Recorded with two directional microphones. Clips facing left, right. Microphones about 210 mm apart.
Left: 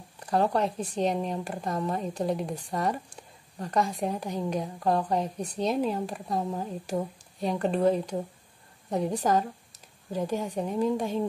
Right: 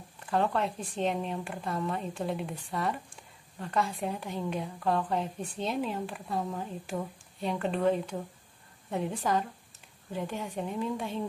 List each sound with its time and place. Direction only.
0.3 s a woman's voice: 40° left (ahead or behind)